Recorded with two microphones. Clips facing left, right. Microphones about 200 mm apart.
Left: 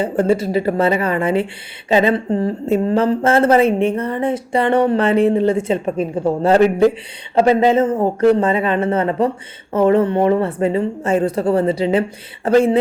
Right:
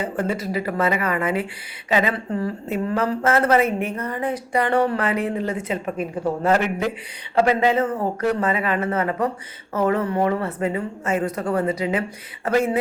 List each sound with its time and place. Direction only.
0.0 s speech: 30° left (ahead or behind)